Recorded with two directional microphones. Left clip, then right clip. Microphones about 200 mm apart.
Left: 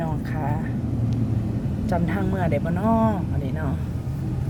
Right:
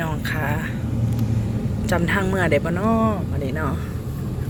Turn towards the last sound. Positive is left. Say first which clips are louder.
# right 1 dB
turn(degrees=10)  # may be behind; listen again after turning